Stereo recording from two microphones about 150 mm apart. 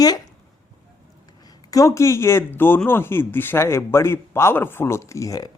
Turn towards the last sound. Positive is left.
turn(degrees=25)  # may be behind; listen again after turning